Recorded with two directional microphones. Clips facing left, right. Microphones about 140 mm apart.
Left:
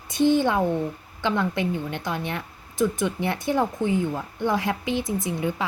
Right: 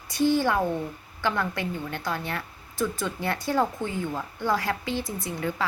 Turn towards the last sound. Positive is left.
turn(degrees=20)  # may be behind; listen again after turning